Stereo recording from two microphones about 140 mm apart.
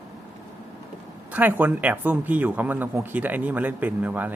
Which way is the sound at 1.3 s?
10° right (ahead or behind).